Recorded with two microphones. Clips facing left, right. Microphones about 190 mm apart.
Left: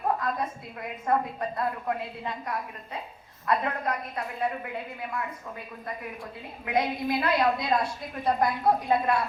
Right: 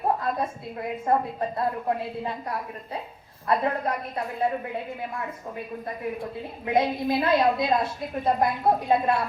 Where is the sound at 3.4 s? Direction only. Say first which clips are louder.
Right 3 dB; 30° right (ahead or behind).